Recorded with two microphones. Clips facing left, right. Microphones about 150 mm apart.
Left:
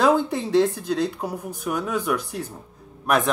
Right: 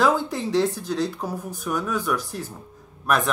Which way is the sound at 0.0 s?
20° left (ahead or behind).